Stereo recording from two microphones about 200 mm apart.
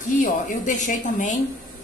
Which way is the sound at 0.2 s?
40° left (ahead or behind).